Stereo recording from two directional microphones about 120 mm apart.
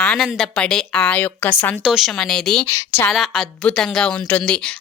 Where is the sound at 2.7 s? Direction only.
20° left (ahead or behind).